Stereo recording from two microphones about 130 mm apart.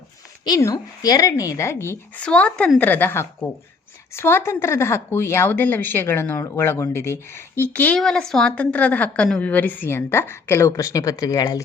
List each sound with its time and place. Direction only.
0.4 s speech: 30° left (ahead or behind)
2.2 s a woman's voice: 10° left (ahead or behind); by 11.6 s 25° left (ahead or behind)